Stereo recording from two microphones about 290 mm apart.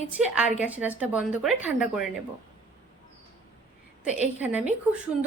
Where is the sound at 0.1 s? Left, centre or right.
Centre.